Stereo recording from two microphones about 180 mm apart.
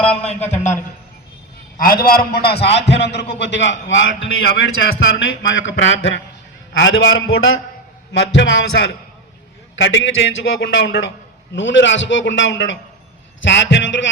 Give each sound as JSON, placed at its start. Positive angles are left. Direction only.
{"t": 0.5, "sound": "a man's voice", "side_deg": 40}
{"t": 1.8, "sound": "a man's voice", "side_deg": 55}
{"t": 11.5, "sound": "a man's voice", "side_deg": 90}